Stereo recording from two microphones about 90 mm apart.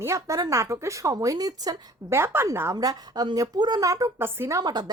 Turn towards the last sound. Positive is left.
turn(degrees=-50)  # may be behind; listen again after turning